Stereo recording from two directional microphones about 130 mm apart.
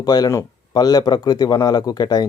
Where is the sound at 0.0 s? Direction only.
30° left (ahead or behind).